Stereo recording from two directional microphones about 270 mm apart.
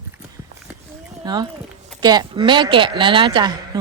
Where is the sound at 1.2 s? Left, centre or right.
Centre.